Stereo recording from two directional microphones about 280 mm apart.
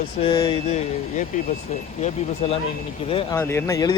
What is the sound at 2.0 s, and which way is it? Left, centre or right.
Speech, left.